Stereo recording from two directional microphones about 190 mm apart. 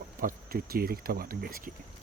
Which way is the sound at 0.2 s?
50° right (ahead or behind).